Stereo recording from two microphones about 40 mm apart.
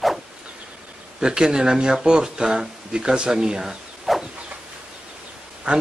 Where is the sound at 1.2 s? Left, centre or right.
Centre.